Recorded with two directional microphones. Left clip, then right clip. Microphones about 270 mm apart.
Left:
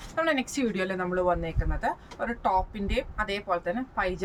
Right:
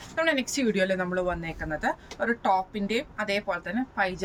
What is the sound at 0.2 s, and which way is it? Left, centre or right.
A woman's voice, centre.